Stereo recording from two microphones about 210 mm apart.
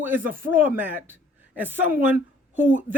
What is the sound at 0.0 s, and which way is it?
A woman's voice, 10° right (ahead or behind).